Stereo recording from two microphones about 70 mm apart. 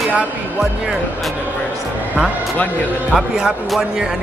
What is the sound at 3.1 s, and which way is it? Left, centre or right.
Speech, centre.